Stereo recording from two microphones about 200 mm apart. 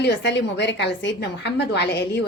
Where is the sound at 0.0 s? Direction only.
60° left (ahead or behind).